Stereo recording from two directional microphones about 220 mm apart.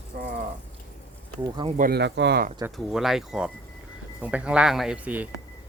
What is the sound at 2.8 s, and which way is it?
Speech, centre (ahead or behind).